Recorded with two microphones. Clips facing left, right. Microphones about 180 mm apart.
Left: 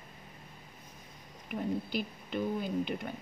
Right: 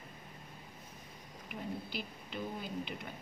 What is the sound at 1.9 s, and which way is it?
A woman's voice, 50° left (ahead or behind).